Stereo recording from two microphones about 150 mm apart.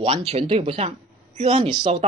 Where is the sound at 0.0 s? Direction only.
40° right (ahead or behind).